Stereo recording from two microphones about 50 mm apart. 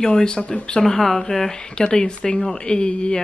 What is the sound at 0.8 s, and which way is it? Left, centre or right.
Speech, centre.